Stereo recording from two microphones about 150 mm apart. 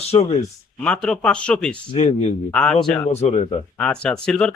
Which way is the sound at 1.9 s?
45° left (ahead or behind).